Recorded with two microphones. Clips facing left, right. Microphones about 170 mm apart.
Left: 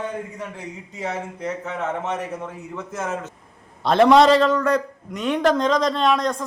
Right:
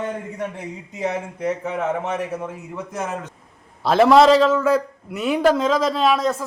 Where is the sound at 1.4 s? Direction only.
10° right (ahead or behind).